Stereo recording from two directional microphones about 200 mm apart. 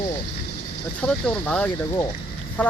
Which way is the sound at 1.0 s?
5° left (ahead or behind).